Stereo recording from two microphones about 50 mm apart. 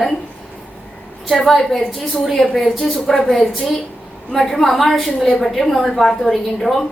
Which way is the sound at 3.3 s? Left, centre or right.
Centre.